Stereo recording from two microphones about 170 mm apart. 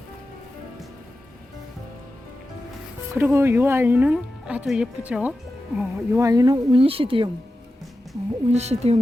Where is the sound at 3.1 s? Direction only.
10° right (ahead or behind); by 7.3 s 30° right (ahead or behind).